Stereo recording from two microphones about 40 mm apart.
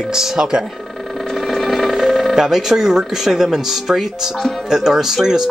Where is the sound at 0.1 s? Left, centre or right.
Centre.